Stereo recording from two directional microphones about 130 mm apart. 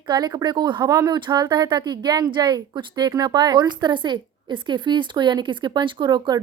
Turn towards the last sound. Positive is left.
turn(degrees=-35)  # may be behind; listen again after turning